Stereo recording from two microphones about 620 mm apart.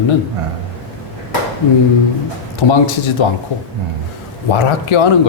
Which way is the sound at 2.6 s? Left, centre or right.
Left.